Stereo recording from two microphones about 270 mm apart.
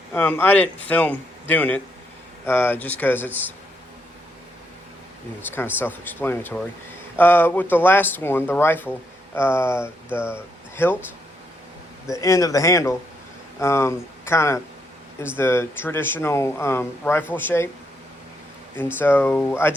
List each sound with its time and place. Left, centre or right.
0.1 s a man's voice: centre
5.5 s speech: centre
12.1 s speech: centre
18.9 s speech: centre